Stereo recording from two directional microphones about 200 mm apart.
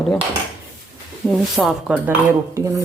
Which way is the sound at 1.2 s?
Centre (ahead or behind).